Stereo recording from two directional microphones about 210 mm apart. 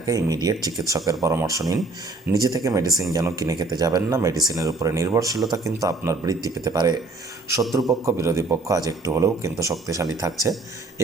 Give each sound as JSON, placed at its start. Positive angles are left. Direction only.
{"t": 0.1, "sound": "speech", "side_deg": -15}
{"t": 8.0, "sound": "speech", "side_deg": -15}